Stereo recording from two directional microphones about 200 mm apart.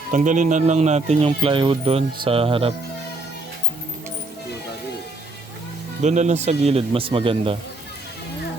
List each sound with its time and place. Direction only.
0.1 s speech: 40° right (ahead or behind)
6.0 s speech: 35° right (ahead or behind)